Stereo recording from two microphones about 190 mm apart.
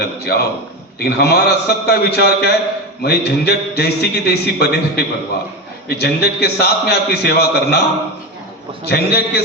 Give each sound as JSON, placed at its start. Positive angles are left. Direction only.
{"t": 0.0, "sound": "a man's voice", "side_deg": 55}
{"t": 8.8, "sound": "a man's voice", "side_deg": 55}